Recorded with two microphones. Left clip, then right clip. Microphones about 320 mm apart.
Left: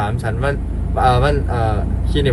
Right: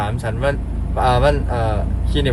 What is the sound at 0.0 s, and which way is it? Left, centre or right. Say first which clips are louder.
Speech: even; centre.